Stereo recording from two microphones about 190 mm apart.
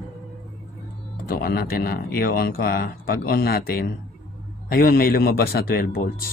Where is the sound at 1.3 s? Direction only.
55° left (ahead or behind).